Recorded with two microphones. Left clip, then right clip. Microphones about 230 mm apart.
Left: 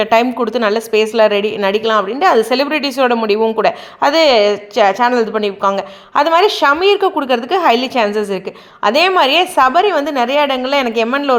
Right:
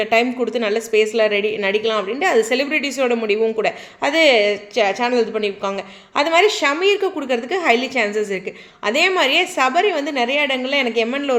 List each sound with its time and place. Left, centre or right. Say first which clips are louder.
0.0 s a woman's voice: left 5 dB; left